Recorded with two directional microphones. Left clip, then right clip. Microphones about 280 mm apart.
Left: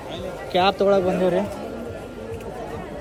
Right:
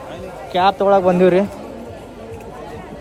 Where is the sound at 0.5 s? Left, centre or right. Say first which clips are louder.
Right 4 dB; centre.